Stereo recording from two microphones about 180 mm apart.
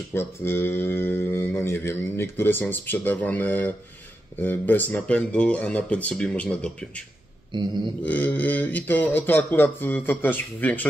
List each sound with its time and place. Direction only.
0.1 s speech: 15° left (ahead or behind)
7.5 s mantra: 25° right (ahead or behind)
8.0 s speech: 10° left (ahead or behind)